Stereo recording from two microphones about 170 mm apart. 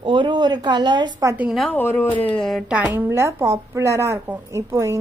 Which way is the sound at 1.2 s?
15° right (ahead or behind).